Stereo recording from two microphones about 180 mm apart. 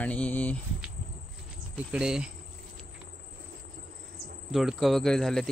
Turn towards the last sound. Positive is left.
turn(degrees=5)  # may be behind; listen again after turning